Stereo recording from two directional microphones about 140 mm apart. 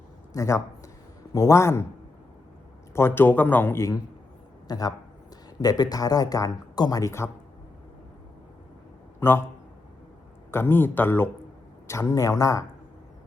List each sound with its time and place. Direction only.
0.3 s speech: 20° left (ahead or behind)
2.9 s a man's voice: 15° left (ahead or behind)
9.2 s a man's voice: 20° left (ahead or behind)
10.5 s a man's voice: 15° left (ahead or behind)